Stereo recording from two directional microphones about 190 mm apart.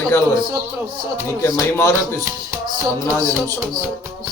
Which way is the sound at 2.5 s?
20° right (ahead or behind).